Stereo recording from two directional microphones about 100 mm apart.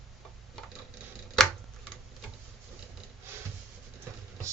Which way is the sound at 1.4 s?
5° left (ahead or behind).